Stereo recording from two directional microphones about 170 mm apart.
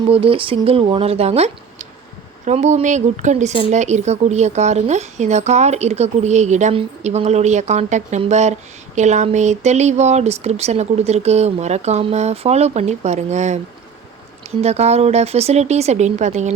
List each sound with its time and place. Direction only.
0.1 s speech: 30° right (ahead or behind)
14.6 s speech: 40° right (ahead or behind)